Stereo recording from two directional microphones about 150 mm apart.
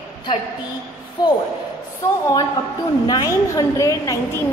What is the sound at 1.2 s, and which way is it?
Speech, 30° left (ahead or behind).